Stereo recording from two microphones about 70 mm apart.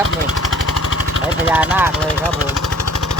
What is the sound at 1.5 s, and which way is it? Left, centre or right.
Speech, right.